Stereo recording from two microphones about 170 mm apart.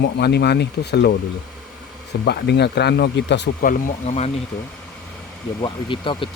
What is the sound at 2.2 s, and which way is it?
Speech, 75° left (ahead or behind).